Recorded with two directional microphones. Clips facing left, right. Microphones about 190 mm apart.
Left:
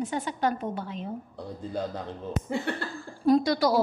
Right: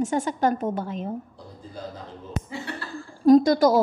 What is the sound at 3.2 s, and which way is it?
Speech, 45° right (ahead or behind).